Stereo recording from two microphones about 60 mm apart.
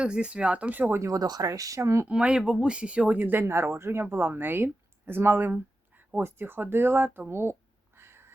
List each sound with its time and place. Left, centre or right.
0.0 s speech: centre
1.1 s speech: right
1.8 s speech: right
2.0 s speech: centre
3.2 s speech: right
7.9 s a sound: right